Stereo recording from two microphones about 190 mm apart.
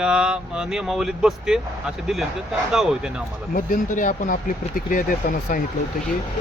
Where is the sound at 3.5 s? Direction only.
45° left (ahead or behind).